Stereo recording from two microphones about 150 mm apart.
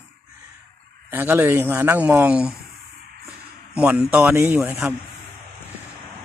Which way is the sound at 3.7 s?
10° right (ahead or behind).